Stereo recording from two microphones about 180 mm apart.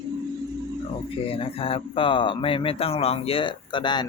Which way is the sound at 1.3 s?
30° left (ahead or behind).